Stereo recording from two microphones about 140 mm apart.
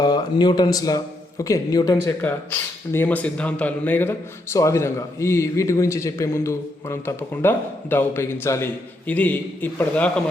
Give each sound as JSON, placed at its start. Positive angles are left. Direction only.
{"t": 0.0, "sound": "speech", "side_deg": 30}
{"t": 2.2, "sound": "speech", "side_deg": 15}